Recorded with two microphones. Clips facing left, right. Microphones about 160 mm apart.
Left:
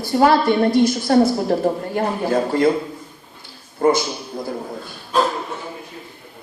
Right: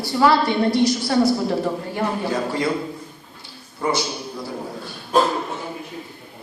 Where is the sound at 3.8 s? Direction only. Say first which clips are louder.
Left 6 dB; 50° left (ahead or behind).